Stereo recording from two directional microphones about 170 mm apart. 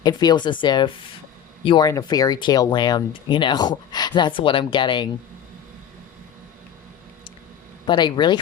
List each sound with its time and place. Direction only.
0.0 s speech: 25° left (ahead or behind)
7.9 s speech: 25° left (ahead or behind)